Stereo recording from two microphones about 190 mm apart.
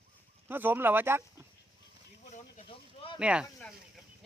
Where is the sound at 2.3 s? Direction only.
40° left (ahead or behind).